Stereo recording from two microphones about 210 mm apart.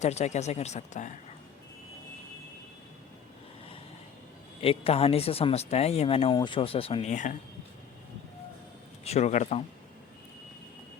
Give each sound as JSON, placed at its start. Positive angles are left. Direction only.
{"t": 0.0, "sound": "speech", "side_deg": 30}
{"t": 4.6, "sound": "speech", "side_deg": 25}
{"t": 9.0, "sound": "speech", "side_deg": 30}